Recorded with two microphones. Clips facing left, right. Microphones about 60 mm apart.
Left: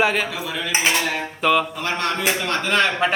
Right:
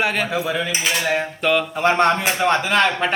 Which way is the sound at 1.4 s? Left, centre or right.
Centre.